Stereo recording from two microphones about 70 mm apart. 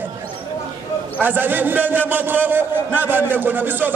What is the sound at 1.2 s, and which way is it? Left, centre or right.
A man's voice, right.